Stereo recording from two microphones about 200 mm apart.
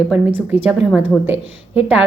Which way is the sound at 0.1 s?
10° right (ahead or behind).